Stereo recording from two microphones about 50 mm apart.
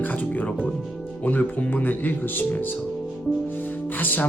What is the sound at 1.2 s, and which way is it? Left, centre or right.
Speech, left.